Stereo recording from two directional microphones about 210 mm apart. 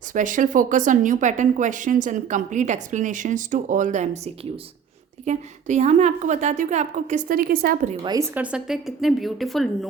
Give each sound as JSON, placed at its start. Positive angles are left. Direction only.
{"t": 0.1, "sound": "speech", "side_deg": -40}
{"t": 5.2, "sound": "speech", "side_deg": -35}
{"t": 8.0, "sound": "a woman's voice", "side_deg": -15}
{"t": 8.4, "sound": "a woman's voice", "side_deg": -5}